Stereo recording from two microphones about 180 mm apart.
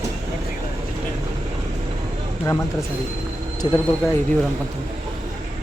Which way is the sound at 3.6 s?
25° left (ahead or behind).